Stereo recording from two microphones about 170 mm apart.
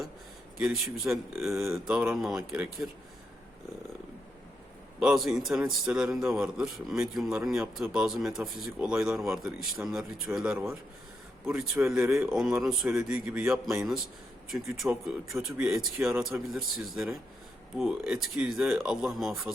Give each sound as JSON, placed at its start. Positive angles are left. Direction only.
{"t": 0.6, "sound": "a man's voice", "side_deg": 0}
{"t": 4.9, "sound": "a man's voice", "side_deg": -5}
{"t": 11.9, "sound": "a man's voice", "side_deg": -15}
{"t": 12.2, "sound": "a man's voice", "side_deg": -5}
{"t": 14.5, "sound": "a man's voice", "side_deg": 0}